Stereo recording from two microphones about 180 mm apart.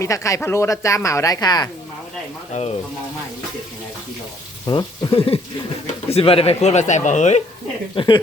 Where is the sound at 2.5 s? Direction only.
35° left (ahead or behind).